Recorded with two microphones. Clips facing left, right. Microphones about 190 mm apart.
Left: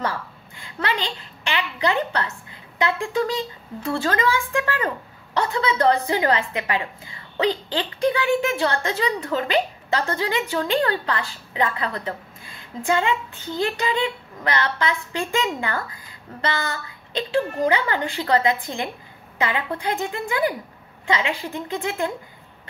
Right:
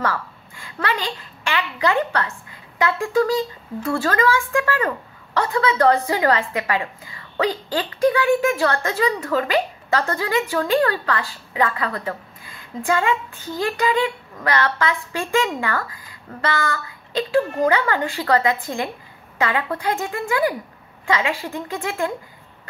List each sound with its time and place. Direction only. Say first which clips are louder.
0.0 s a woman's voice: right 3 dB; 20° left (ahead or behind)
19.7 s a woman's voice: right 2 dB; 20° left (ahead or behind)